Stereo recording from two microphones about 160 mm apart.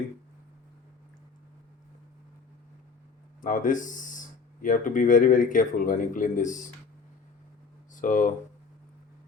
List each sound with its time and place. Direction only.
3.4 s speech: 55° left (ahead or behind)
7.9 s speech: 55° left (ahead or behind)